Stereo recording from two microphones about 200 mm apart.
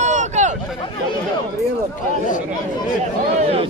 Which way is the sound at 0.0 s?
35° right (ahead or behind).